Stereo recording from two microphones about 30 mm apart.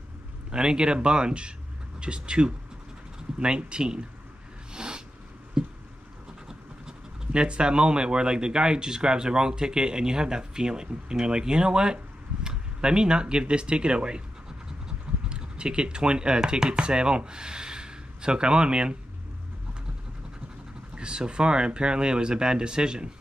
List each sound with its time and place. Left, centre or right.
0.5 s speech: right
4.7 s cat: right
5.6 s a sound: right
6.9 s speech: right
20.9 s vehicle: right
21.3 s speech: right